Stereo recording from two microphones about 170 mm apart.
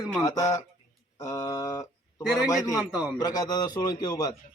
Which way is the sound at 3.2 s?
20° left (ahead or behind).